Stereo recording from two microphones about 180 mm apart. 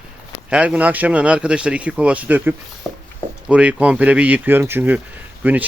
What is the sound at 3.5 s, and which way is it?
Speech, 5° right (ahead or behind).